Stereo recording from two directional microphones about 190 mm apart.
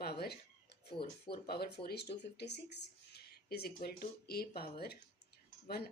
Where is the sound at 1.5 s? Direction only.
55° left (ahead or behind).